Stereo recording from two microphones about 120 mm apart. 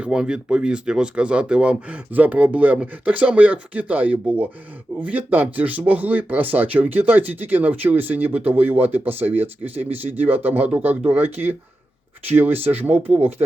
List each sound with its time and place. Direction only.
0.0 s speech: 5° right (ahead or behind)